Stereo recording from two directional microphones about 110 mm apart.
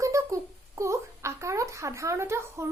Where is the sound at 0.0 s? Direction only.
30° right (ahead or behind).